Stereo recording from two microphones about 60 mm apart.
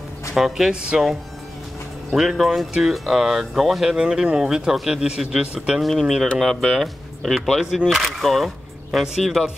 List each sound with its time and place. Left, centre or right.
0.3 s speech: centre
0.7 s speech: centre
2.0 s speech: centre
5.8 s speech: centre